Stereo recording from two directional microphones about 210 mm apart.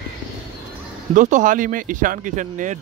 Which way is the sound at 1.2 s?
35° right (ahead or behind).